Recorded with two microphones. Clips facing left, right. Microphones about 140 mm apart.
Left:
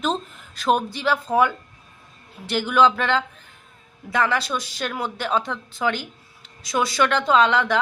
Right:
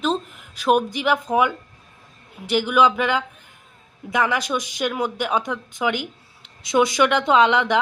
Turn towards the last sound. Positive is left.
turn(degrees=-20)  # may be behind; listen again after turning